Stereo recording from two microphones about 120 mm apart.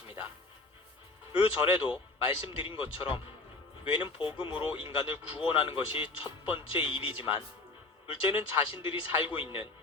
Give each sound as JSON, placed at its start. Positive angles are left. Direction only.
{"t": 1.3, "sound": "speech", "side_deg": 45}